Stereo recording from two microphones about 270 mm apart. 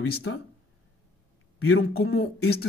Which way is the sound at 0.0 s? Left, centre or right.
Left.